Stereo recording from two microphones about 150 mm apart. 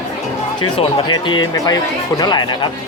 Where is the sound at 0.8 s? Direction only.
35° left (ahead or behind).